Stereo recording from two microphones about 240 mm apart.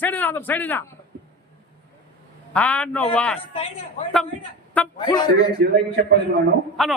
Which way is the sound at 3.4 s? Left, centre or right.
Left.